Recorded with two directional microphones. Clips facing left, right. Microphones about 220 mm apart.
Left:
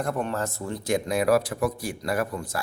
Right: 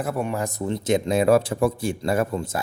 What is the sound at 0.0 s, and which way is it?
A man's voice, 10° right (ahead or behind).